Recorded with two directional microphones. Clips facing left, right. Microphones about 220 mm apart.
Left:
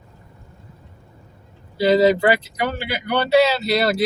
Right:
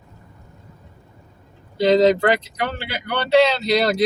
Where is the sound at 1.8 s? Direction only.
5° left (ahead or behind).